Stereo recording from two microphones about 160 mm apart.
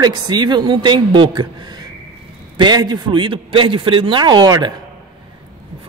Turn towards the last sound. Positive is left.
turn(degrees=-25)  # may be behind; listen again after turning